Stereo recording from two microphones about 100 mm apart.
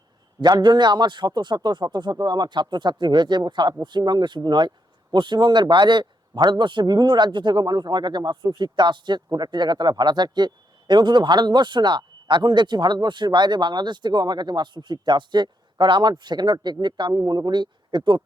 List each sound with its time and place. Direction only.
0.4 s a man's voice: 45° right (ahead or behind)